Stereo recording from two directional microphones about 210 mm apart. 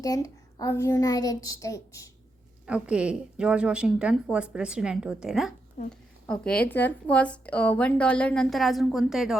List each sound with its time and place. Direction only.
0.0 s a child's voice: 15° left (ahead or behind)
2.6 s a woman's voice: 5° right (ahead or behind)
5.8 s speech: 35° left (ahead or behind)
6.2 s a woman's voice: 5° left (ahead or behind)